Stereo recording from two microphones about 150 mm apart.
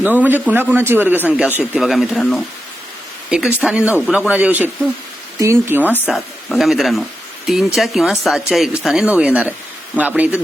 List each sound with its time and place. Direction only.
0.0 s speech: 10° right (ahead or behind)
6.1 s speech: centre (ahead or behind)